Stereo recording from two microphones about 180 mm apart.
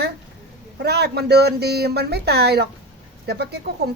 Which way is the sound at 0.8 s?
65° right (ahead or behind).